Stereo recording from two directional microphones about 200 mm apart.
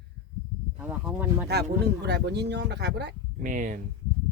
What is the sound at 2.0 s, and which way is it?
Speech, 55° right (ahead or behind).